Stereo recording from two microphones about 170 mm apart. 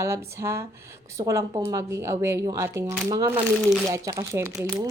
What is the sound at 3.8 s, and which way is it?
Speech, 15° right (ahead or behind).